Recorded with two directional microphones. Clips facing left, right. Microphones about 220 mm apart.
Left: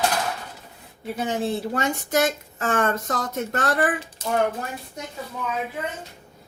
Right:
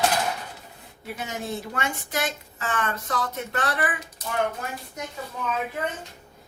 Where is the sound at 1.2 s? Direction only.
30° left (ahead or behind).